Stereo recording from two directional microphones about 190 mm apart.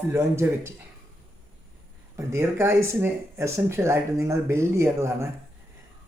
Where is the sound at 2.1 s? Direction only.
15° right (ahead or behind).